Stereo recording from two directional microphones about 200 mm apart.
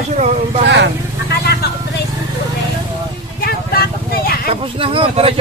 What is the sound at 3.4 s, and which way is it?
Vehicle, 50° left (ahead or behind).